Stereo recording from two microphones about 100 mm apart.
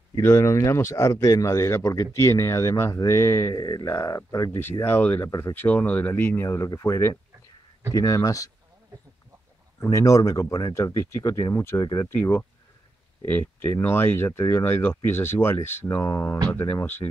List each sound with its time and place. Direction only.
0.1 s speech: 25° left (ahead or behind)
3.5 s speech: 45° left (ahead or behind)
3.9 s speech: 35° left (ahead or behind)
4.5 s speech: 20° left (ahead or behind)
5.2 s speech: 30° left (ahead or behind)
5.5 s speech: 15° left (ahead or behind); by 8.5 s 35° left (ahead or behind)
9.8 s speech: 30° left (ahead or behind)